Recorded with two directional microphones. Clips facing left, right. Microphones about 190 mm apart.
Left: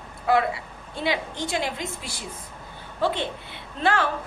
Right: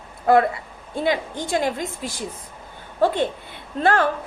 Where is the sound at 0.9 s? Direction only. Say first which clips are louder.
Right 4 dB; 50° right (ahead or behind).